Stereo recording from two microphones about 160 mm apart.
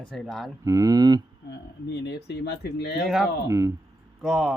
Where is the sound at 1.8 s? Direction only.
90° left.